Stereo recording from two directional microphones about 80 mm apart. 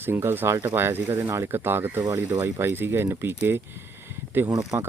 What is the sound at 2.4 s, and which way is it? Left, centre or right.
Speech, right.